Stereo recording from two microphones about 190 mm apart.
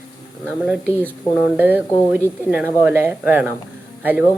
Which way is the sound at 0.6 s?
5° right (ahead or behind).